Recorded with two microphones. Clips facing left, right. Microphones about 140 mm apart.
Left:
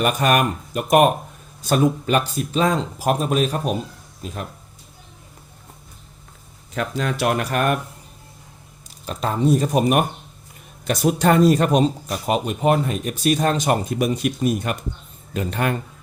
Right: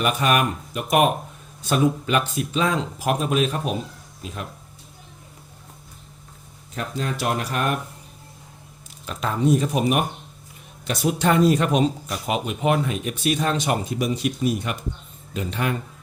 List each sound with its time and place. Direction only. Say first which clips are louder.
0.0 s speech: left 2 dB; 45° left (ahead or behind)
2.2 s speech: left 1 dB; centre (ahead or behind)
2.5 s speech: left 4 dB; 40° left (ahead or behind)
3.6 s speech: left 3 dB; centre (ahead or behind)
6.7 s speech: left 4 dB; 85° left; by 7.8 s 55° left (ahead or behind)
9.0 s speech: left 1 dB; 35° left (ahead or behind)